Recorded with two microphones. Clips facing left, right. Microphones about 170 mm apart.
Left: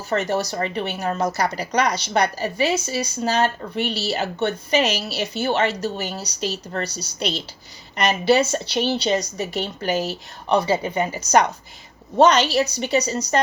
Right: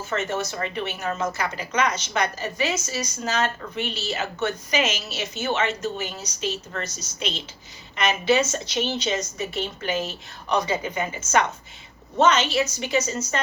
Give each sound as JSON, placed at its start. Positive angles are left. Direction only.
{"t": 0.1, "sound": "speech", "side_deg": 35}